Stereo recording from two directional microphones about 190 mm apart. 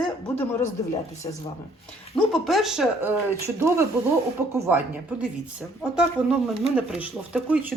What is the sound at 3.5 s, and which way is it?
A woman's voice, 15° right (ahead or behind).